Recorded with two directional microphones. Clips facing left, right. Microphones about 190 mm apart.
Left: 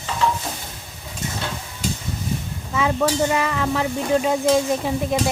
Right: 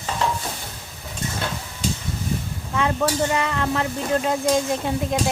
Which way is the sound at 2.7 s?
Centre (ahead or behind).